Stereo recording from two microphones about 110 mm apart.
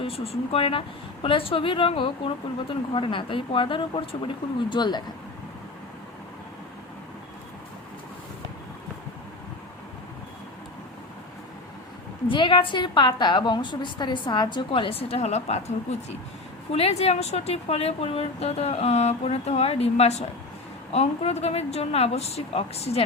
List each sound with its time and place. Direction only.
0.0 s speech: 60° left (ahead or behind)
4.7 s speech: 40° left (ahead or behind)
12.3 s speech: 50° left (ahead or behind); by 16.0 s 90° left
16.7 s speech: 70° left (ahead or behind)